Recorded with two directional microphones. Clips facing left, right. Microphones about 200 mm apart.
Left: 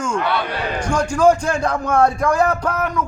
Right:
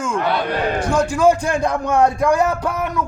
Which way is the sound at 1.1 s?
10° right (ahead or behind).